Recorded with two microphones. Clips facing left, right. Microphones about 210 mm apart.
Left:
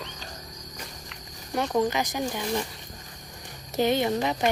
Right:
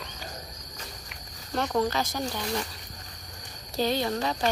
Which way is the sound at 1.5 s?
15° left (ahead or behind).